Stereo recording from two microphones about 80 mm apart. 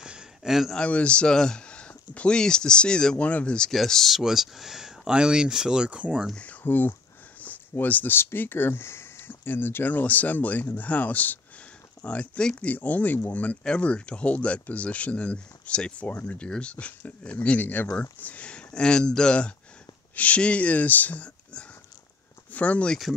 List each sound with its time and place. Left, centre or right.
0.0 s a sound: centre
0.7 s speech: centre
6.3 s speech: centre